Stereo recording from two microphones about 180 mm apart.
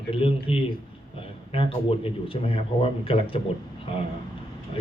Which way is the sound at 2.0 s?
30° left (ahead or behind).